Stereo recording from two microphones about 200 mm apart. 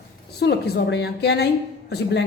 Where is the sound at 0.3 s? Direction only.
55° left (ahead or behind).